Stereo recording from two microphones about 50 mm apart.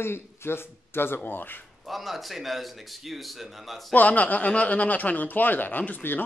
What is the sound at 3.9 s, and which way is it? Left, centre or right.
Speech, left.